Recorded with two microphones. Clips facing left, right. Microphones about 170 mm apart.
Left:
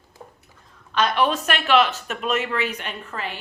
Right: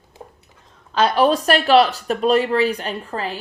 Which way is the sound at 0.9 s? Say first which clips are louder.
Right 5 dB; 30° right (ahead or behind).